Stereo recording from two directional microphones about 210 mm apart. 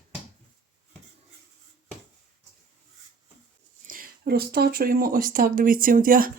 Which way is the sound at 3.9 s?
45° right (ahead or behind).